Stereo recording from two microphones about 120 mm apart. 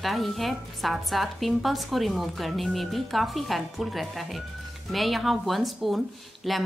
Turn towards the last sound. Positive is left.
turn(degrees=0)  # may be behind; listen again after turning